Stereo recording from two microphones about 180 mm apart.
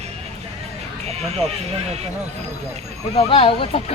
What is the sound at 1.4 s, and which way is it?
Speech, 35° right (ahead or behind).